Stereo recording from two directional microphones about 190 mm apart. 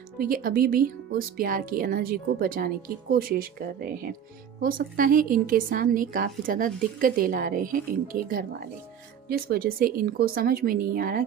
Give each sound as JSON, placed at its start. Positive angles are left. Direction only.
{"t": 0.2, "sound": "a woman's voice", "side_deg": -50}